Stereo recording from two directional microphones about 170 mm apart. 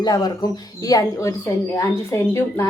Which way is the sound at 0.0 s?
20° left (ahead or behind).